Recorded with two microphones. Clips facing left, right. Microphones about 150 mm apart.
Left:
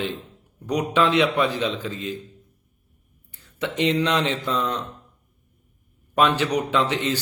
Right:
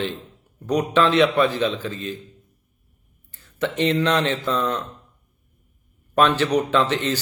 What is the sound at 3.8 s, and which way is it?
Speech, 15° left (ahead or behind).